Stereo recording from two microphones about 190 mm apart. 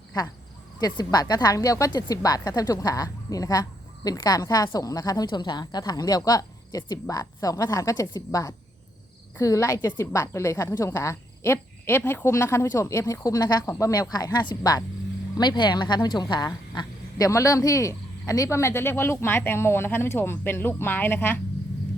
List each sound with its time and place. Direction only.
0.8 s speech: 20° left (ahead or behind)